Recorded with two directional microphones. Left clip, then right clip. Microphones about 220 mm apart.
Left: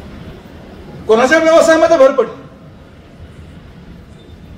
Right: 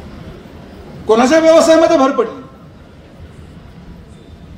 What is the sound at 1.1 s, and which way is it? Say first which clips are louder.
Speech: even; 45° right (ahead or behind).